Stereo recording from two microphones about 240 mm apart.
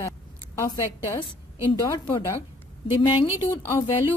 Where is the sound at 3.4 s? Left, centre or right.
Centre.